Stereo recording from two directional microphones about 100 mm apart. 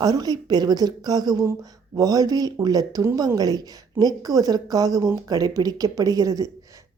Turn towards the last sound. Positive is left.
turn(degrees=-35)  # may be behind; listen again after turning